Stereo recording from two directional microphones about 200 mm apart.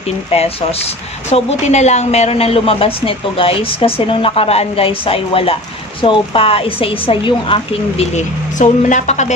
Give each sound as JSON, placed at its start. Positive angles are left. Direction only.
{"t": 0.3, "sound": "a woman's voice", "side_deg": 30}
{"t": 8.1, "sound": "speech", "side_deg": 35}